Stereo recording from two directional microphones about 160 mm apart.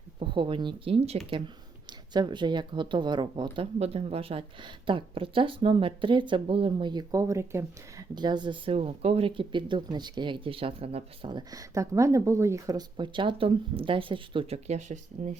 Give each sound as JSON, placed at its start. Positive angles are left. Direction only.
{"t": 0.2, "sound": "speech", "side_deg": -30}
{"t": 1.9, "sound": "speech", "side_deg": -30}